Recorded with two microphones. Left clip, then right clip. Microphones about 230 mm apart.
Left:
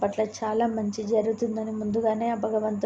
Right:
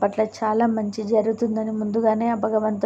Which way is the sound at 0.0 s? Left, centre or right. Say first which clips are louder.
Right 5 dB; right.